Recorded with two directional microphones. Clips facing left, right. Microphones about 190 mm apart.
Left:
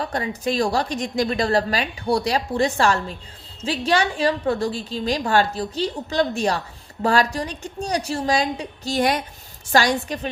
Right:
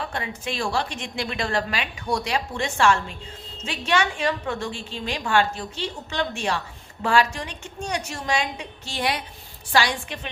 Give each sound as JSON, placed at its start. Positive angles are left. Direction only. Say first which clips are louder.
{"t": 0.0, "sound": "a woman's voice", "louder": "left 6 dB", "side_deg": 40}